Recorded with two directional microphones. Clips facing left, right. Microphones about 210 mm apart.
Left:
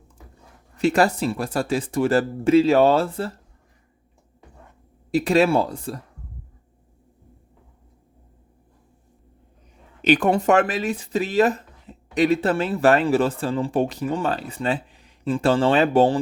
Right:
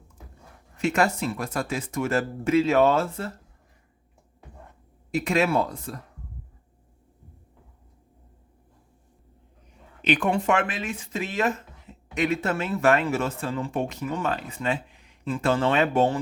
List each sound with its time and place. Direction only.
0.8 s speech: 35° left (ahead or behind)
5.1 s speech: 35° left (ahead or behind)
10.0 s speech: 40° left (ahead or behind)